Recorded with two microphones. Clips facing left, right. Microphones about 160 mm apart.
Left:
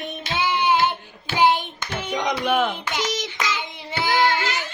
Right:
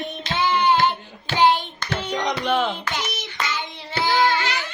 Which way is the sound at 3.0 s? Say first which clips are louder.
Left 5 dB; 90° left.